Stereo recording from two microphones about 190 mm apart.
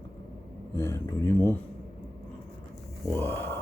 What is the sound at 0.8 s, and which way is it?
Speech, 15° left (ahead or behind).